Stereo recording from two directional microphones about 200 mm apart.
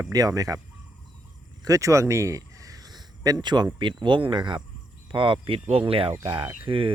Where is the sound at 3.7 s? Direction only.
25° right (ahead or behind).